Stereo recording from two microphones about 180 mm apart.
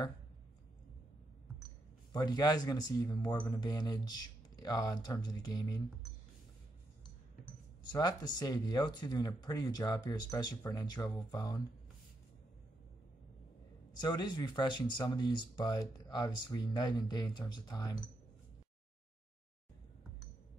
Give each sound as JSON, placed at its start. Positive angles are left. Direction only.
{"t": 2.1, "sound": "speech", "side_deg": 20}
{"t": 7.8, "sound": "speech", "side_deg": 25}
{"t": 13.9, "sound": "speech", "side_deg": 25}